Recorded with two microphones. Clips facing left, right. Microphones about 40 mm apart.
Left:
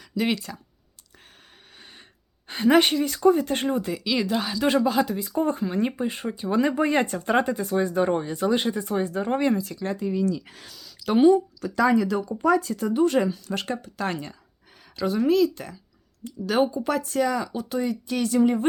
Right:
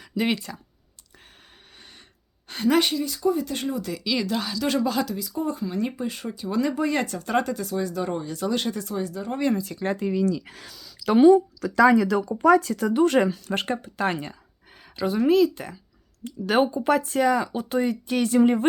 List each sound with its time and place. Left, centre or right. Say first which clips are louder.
0.2 s speech: even; centre
1.8 s a sound: left 2 dB; centre
2.5 s a woman's voice: left 3 dB; left
2.9 s speech: left 4 dB; left
3.8 s speech: left 3 dB; left
4.0 s speech: right 2 dB; centre
5.0 s speech: left 3 dB; left
8.9 s speech: left 4 dB; left
9.7 s speech: right 2 dB; right
11.8 s speech: right 3 dB; right
13.5 s speech: right 2 dB; right
13.8 s speech: right 3 dB; right
14.9 s speech: right 1 dB; centre
16.5 s speech: right 2 dB; right